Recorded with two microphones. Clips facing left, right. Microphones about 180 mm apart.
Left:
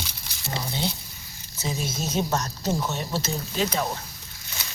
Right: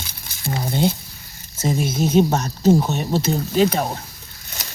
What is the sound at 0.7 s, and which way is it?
Speech, 50° right (ahead or behind).